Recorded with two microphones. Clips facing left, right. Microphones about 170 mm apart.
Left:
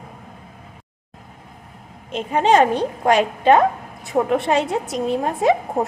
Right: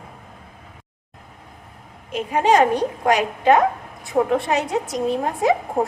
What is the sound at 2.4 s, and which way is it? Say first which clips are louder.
A woman's voice: left 1 dB; 25° left (ahead or behind).